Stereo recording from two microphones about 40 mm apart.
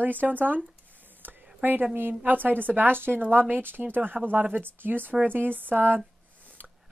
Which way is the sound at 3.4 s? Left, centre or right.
Right.